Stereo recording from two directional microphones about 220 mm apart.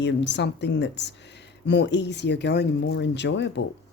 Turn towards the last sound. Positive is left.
turn(degrees=55)  # may be behind; listen again after turning